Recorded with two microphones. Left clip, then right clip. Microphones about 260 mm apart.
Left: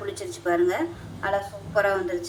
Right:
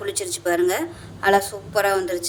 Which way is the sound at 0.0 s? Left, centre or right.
Right.